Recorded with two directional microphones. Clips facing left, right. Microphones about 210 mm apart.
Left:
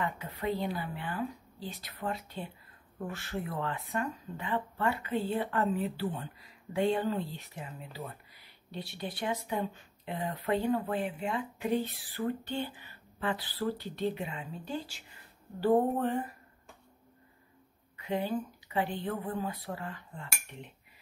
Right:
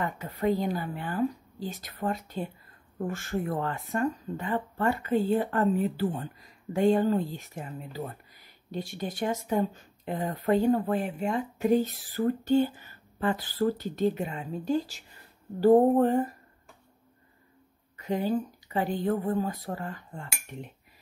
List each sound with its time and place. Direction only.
0.0 s speech: 45° right (ahead or behind)
17.9 s speech: 40° right (ahead or behind)